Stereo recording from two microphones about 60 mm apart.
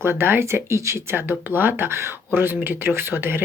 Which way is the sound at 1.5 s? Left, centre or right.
Right.